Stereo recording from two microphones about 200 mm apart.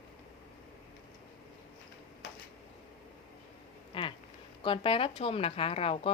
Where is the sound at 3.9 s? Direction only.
25° left (ahead or behind).